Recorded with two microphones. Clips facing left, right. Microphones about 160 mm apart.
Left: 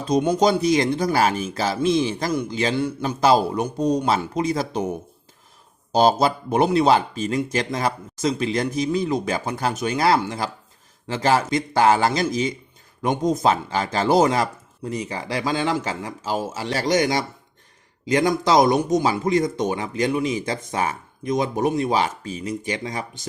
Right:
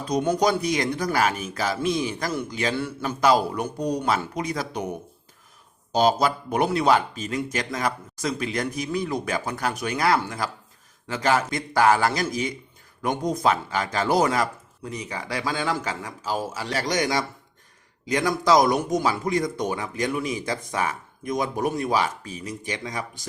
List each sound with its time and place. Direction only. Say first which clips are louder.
0.1 s speech: left 4 dB; 20° left (ahead or behind)
5.9 s speech: left 3 dB; 35° left (ahead or behind)